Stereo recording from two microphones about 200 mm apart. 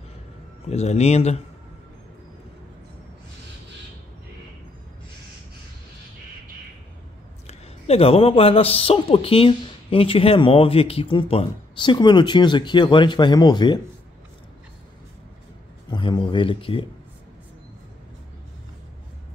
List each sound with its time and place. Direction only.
0.7 s speech: 35° left (ahead or behind)
7.4 s speech: 30° left (ahead or behind)
15.9 s speech: 25° left (ahead or behind)